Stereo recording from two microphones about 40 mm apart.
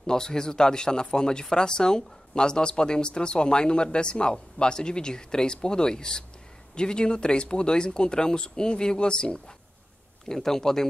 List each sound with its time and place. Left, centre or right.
0.0 s speech: centre
10.2 s speech: centre